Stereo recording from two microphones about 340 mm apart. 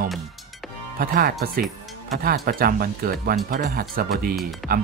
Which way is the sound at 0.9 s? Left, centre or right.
Right.